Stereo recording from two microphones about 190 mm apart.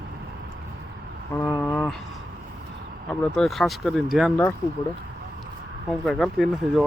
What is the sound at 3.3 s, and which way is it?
Speech, centre (ahead or behind).